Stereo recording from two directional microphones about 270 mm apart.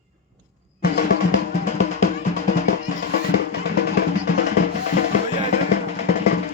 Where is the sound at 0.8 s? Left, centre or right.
Left.